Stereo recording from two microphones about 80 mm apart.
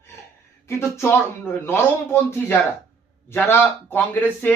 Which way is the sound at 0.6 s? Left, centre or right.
Left.